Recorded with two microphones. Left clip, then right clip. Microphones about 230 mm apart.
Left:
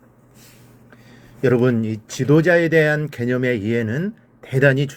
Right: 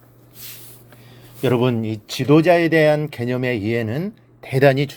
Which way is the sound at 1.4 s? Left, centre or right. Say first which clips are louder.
Left 1 dB; right.